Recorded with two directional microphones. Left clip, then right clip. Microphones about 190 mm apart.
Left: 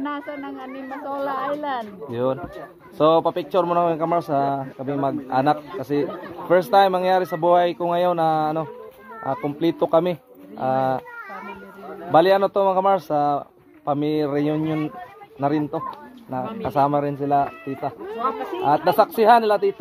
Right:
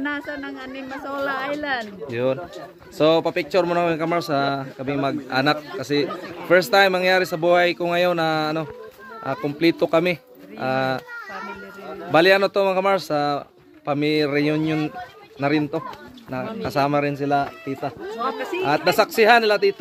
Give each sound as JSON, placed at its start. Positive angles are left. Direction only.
{"t": 0.0, "sound": "speech", "side_deg": -5}
{"t": 3.0, "sound": "speech", "side_deg": 10}
{"t": 12.1, "sound": "a man's voice", "side_deg": 5}
{"t": 18.1, "sound": "speech", "side_deg": -35}
{"t": 18.9, "sound": "a man's voice", "side_deg": 10}